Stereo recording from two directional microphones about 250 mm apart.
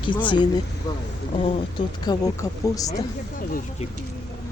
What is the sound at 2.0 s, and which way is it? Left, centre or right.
Speech, centre.